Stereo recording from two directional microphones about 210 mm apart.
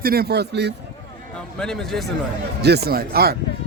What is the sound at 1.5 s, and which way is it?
Speech, 5° left (ahead or behind).